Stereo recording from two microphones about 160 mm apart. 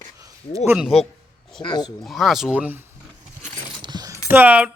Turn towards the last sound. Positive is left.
turn(degrees=-10)  # may be behind; listen again after turning